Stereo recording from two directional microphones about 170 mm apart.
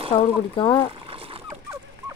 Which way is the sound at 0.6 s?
30° left (ahead or behind).